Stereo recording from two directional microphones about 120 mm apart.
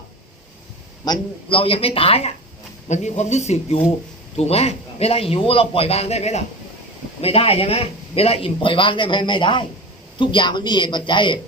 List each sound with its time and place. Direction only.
1.0 s a man's voice: 40° left (ahead or behind)
2.9 s a man's voice: 75° left (ahead or behind)
7.2 s a man's voice: 55° left (ahead or behind)